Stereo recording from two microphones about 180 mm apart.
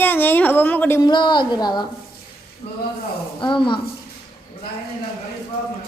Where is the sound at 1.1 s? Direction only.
25° left (ahead or behind).